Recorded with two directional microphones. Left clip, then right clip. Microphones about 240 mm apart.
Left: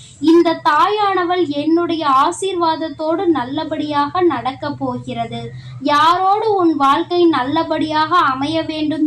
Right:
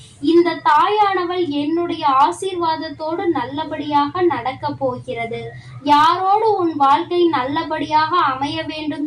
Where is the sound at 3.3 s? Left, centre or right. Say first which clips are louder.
Left 3 dB; left.